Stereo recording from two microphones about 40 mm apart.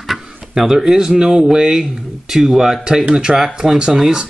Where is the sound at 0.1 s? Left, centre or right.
Centre.